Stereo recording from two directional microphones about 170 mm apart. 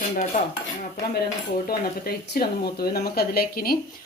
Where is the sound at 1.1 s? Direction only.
65° left (ahead or behind).